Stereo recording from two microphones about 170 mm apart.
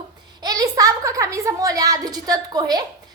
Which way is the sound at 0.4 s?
20° right (ahead or behind).